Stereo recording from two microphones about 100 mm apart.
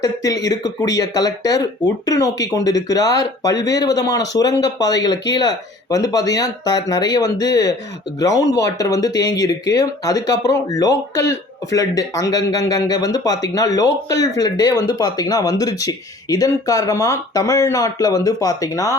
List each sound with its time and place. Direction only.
0.0 s speech: 35° left (ahead or behind)